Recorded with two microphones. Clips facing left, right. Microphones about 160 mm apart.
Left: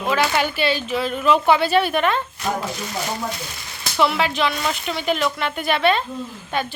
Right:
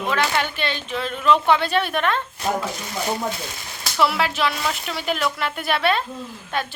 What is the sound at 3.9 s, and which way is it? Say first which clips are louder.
Speech: left 1 dB; centre (ahead or behind).